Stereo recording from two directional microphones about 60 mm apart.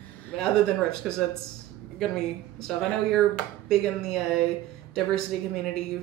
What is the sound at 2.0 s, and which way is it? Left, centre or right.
Speech, centre.